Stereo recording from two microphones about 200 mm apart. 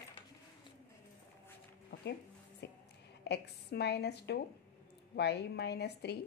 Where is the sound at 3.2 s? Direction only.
55° left (ahead or behind).